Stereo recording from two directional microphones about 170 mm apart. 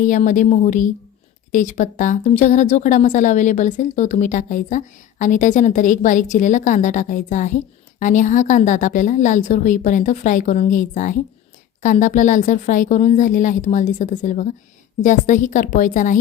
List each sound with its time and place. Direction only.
0.0 s a woman's voice: 50° left (ahead or behind)